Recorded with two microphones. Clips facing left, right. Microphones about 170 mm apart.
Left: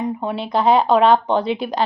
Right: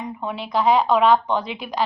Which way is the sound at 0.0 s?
35° left (ahead or behind).